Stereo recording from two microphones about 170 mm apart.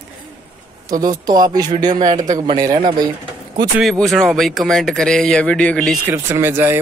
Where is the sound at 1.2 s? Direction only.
25° right (ahead or behind).